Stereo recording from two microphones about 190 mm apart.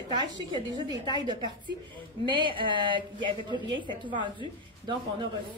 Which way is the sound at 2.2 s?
25° right (ahead or behind).